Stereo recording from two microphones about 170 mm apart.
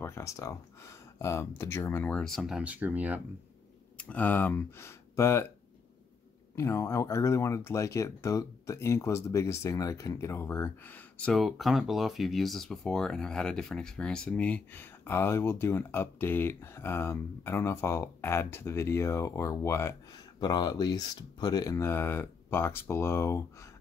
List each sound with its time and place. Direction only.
0.0 s speech: 15° left (ahead or behind); by 3.2 s 10° right (ahead or behind)
4.0 s speech: 10° left (ahead or behind)
6.5 s speech: 15° left (ahead or behind)